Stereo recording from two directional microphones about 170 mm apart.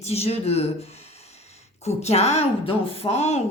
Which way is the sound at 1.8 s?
40° left (ahead or behind).